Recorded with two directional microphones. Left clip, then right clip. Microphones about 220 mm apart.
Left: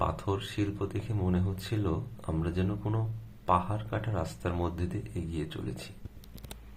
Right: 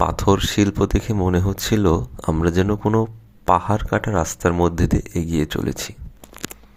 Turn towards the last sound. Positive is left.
turn(degrees=-45)  # may be behind; listen again after turning